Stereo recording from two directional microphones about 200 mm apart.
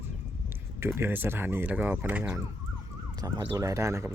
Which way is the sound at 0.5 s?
10° right (ahead or behind).